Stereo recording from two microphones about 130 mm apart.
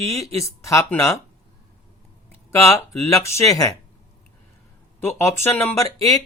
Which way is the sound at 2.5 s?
25° left (ahead or behind).